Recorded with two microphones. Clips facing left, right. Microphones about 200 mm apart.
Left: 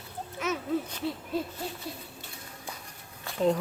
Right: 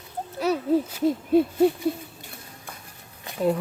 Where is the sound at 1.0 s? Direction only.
60° right (ahead or behind).